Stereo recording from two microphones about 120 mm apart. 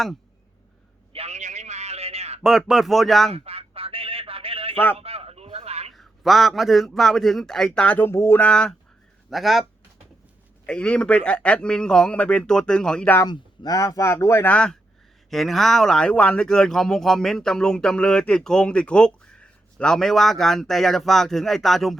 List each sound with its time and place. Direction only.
1.1 s a sound: 65° right (ahead or behind)
2.4 s speech: 5° right (ahead or behind)
3.3 s telephone: 55° right (ahead or behind)
4.9 s a sound: 55° right (ahead or behind)
5.9 s speech: centre (ahead or behind); by 8.4 s 20° left (ahead or behind)
8.4 s a man's voice: 5° left (ahead or behind)
10.7 s a man's voice: 10° left (ahead or behind)
13.2 s speech: 35° left (ahead or behind)
14.5 s a man's voice: 5° left (ahead or behind)